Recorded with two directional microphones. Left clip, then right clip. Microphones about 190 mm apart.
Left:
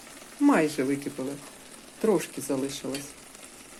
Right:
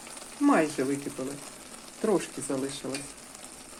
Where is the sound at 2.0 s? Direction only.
15° left (ahead or behind).